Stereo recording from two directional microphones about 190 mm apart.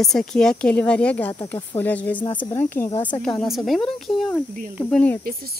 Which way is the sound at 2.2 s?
25° left (ahead or behind).